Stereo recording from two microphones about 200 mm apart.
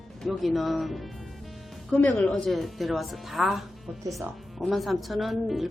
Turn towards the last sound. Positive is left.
turn(degrees=0)  # may be behind; listen again after turning